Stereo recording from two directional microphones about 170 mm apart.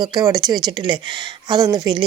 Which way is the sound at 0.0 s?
25° right (ahead or behind).